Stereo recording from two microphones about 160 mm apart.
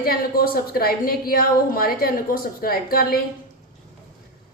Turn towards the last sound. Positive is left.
turn(degrees=70)  # may be behind; listen again after turning